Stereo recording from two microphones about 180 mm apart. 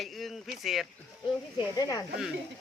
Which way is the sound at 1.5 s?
20° left (ahead or behind).